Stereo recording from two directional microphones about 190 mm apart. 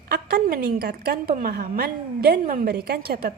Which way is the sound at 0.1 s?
55° right (ahead or behind).